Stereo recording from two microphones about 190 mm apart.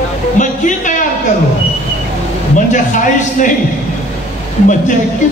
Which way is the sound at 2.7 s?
40° left (ahead or behind).